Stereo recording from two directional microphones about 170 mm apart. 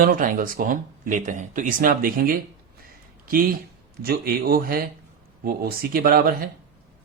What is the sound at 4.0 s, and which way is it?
Speech, 65° right (ahead or behind).